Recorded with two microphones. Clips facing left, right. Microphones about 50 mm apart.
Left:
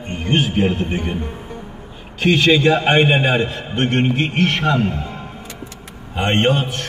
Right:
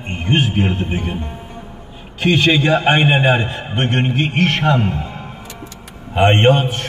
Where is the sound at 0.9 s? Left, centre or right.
Centre.